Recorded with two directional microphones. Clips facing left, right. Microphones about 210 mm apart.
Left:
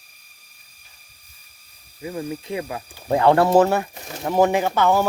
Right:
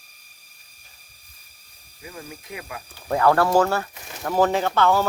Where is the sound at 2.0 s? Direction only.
25° left (ahead or behind).